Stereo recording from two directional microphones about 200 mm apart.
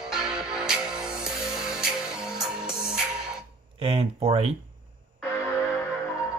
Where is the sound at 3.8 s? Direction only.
30° right (ahead or behind).